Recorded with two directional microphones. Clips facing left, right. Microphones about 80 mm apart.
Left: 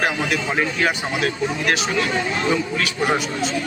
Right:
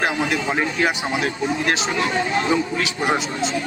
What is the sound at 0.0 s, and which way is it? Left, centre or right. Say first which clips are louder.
A man's voice: even; right.